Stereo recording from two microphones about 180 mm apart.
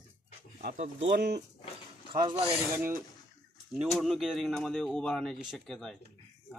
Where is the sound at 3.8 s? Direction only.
Centre (ahead or behind).